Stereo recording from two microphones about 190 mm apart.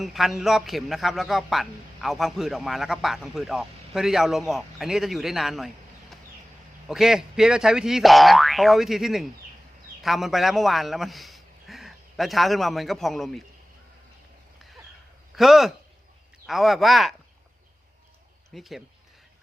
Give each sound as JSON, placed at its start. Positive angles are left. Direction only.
{"t": 0.0, "sound": "a man's voice", "side_deg": 0}
{"t": 15.4, "sound": "a man's voice", "side_deg": 0}
{"t": 18.5, "sound": "a man's voice", "side_deg": 0}